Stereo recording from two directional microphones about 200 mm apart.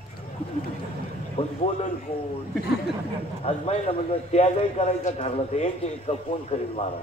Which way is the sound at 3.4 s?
30° left (ahead or behind).